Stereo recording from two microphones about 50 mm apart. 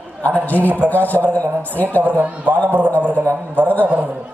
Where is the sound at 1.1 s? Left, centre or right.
Left.